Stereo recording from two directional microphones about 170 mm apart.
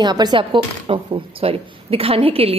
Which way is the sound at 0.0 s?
25° right (ahead or behind).